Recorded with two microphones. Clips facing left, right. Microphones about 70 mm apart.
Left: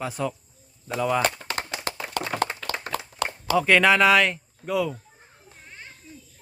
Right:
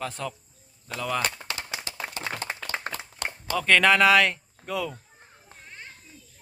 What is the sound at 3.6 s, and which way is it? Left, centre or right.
Speech, centre.